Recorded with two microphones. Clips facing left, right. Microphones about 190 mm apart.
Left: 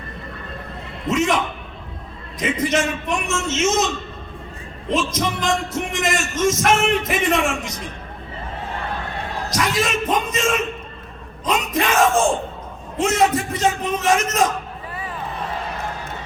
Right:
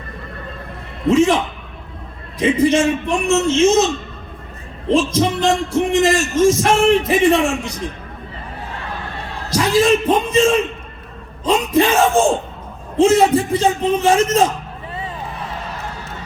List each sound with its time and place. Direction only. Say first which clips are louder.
1.0 s a man's voice: right 7 dB; 30° right (ahead or behind)
2.4 s a man's voice: right 7 dB; 30° right (ahead or behind)
4.9 s a man's voice: right 6 dB; 30° right (ahead or behind)
9.5 s a man's voice: right 9 dB; 30° right (ahead or behind)